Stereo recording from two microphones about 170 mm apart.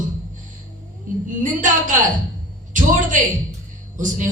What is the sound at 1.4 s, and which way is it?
Music, 50° right (ahead or behind).